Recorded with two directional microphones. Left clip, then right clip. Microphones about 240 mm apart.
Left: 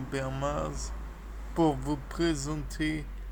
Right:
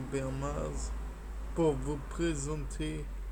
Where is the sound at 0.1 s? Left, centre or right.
Left.